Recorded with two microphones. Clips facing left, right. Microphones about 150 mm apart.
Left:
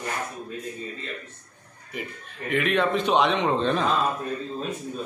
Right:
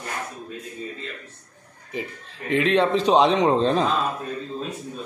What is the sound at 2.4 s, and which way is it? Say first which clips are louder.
A man's voice: right 4 dB; 30° right (ahead or behind).